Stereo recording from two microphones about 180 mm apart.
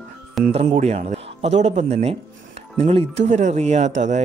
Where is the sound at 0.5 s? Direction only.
35° right (ahead or behind).